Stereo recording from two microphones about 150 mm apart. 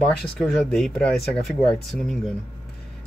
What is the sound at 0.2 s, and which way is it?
Speech, 5° left (ahead or behind).